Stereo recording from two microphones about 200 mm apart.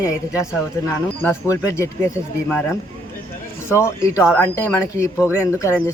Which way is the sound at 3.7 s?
15° left (ahead or behind).